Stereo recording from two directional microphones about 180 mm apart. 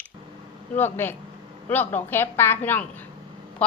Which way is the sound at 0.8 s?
10° left (ahead or behind).